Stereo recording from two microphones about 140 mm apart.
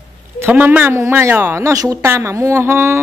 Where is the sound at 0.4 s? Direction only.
15° right (ahead or behind).